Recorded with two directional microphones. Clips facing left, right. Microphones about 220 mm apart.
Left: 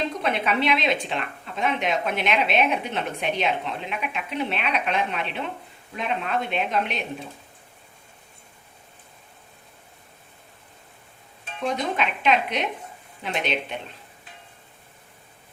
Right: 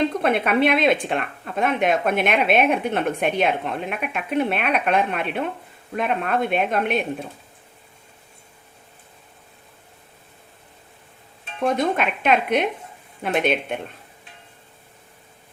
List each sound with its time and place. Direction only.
0.2 s speech: 55° right (ahead or behind)
11.6 s speech: 50° right (ahead or behind)